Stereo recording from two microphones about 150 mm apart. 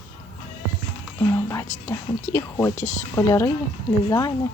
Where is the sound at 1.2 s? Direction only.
20° left (ahead or behind).